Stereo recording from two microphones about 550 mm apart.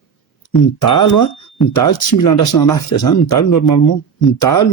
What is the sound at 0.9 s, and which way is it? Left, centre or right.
Speech, left.